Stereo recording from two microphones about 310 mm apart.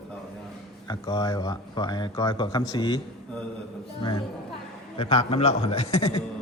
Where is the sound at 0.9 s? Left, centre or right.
Centre.